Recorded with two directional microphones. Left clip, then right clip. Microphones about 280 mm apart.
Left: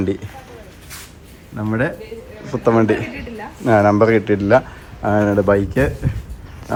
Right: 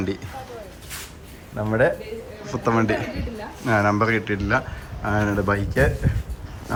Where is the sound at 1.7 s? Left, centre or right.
Centre.